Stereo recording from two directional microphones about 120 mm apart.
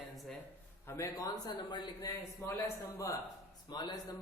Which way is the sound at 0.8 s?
25° left (ahead or behind).